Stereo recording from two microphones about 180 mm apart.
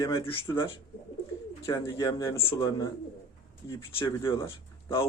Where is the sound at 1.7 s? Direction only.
20° left (ahead or behind).